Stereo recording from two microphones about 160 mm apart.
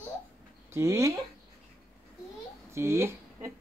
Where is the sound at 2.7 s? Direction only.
15° right (ahead or behind).